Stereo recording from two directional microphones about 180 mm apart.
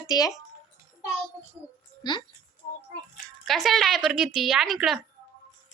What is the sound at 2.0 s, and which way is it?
Speech, 25° left (ahead or behind).